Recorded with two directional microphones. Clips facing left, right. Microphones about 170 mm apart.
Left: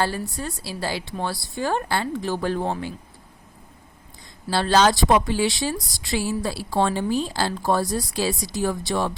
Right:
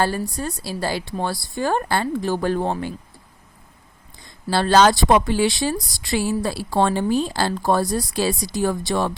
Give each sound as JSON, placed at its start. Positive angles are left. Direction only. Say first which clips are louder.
{"t": 0.0, "sound": "speech", "louder": "right 3 dB", "side_deg": -45}
{"t": 4.5, "sound": "a woman's voice", "louder": "right 3 dB", "side_deg": -50}